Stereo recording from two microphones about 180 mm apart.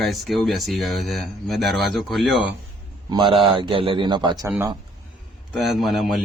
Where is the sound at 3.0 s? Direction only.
25° right (ahead or behind).